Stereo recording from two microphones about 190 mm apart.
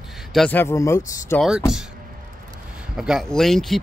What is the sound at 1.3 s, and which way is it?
Speech, centre (ahead or behind).